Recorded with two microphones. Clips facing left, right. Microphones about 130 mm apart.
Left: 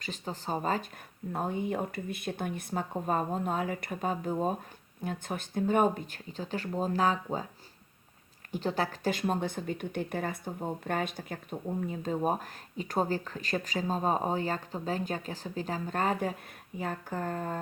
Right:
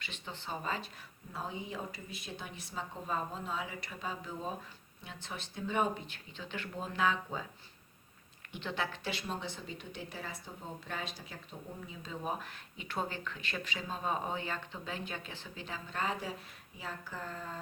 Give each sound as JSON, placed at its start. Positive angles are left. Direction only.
{"t": 0.0, "sound": "speech", "side_deg": 40}
{"t": 1.3, "sound": "speech", "side_deg": 55}
{"t": 8.5, "sound": "speech", "side_deg": 40}